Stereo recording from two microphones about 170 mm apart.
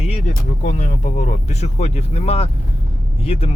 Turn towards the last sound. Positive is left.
turn(degrees=35)  # may be behind; listen again after turning